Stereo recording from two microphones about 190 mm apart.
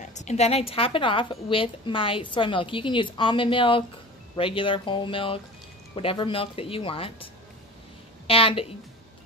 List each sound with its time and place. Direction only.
0.0 s a woman's voice: 40° left (ahead or behind)
8.3 s a woman's voice: 30° left (ahead or behind)